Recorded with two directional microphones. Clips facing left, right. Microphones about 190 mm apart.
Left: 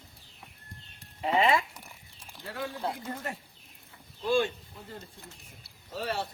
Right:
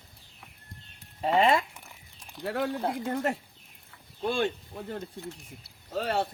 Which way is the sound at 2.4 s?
65° right (ahead or behind).